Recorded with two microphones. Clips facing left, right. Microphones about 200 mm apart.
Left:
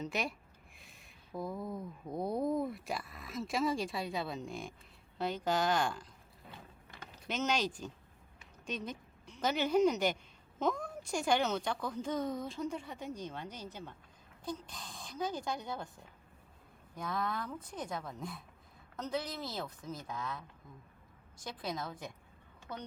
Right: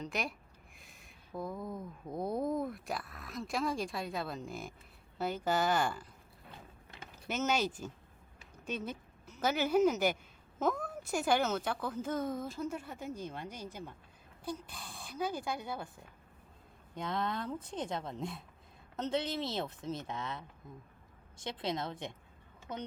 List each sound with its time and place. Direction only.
0.0 s a woman's voice: centre (ahead or behind)
16.9 s speech: 20° right (ahead or behind)